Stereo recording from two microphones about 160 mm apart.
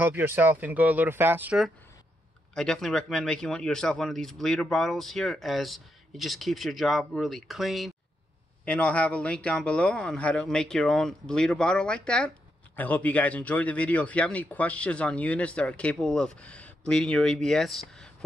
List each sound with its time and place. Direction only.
0.0 s speech: 15° right (ahead or behind)
2.5 s a man's voice: 5° left (ahead or behind)